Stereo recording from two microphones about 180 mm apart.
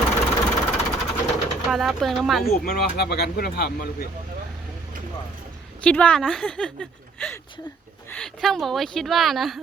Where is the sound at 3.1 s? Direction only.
60° left (ahead or behind).